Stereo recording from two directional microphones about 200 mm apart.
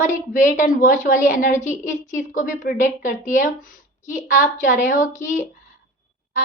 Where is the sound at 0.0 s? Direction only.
40° left (ahead or behind).